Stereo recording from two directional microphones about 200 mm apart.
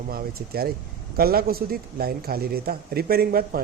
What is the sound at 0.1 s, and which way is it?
Speech, 50° right (ahead or behind).